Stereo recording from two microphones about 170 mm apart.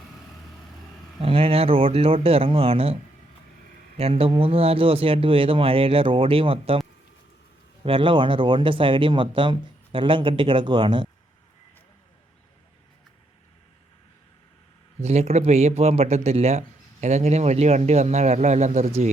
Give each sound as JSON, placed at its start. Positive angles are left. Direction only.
{"t": 1.2, "sound": "speech", "side_deg": -35}
{"t": 7.9, "sound": "speech", "side_deg": -30}
{"t": 15.0, "sound": "speech", "side_deg": -40}